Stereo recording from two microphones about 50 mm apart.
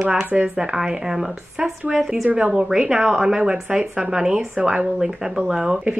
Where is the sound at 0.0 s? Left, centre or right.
Centre.